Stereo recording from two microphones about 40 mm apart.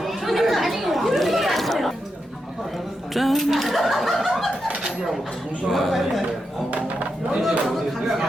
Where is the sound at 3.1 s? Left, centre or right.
Centre.